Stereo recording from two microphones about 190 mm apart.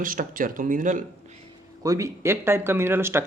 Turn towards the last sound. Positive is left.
turn(degrees=-10)  # may be behind; listen again after turning